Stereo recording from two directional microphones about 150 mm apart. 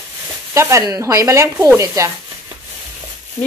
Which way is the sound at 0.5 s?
20° right (ahead or behind).